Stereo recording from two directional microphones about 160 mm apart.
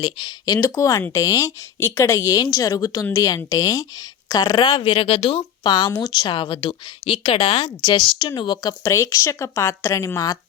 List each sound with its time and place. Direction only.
0.0 s speech: 25° left (ahead or behind)